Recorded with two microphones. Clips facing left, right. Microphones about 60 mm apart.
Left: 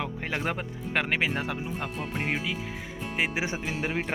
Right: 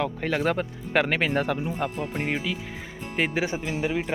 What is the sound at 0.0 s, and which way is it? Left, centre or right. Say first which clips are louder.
Speech: right 6 dB; centre.